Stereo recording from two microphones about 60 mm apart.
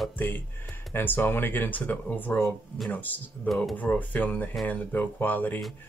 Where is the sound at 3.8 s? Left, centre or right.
Left.